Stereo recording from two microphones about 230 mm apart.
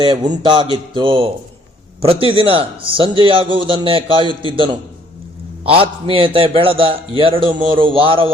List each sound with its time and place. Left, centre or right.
0.0 s a man's voice: centre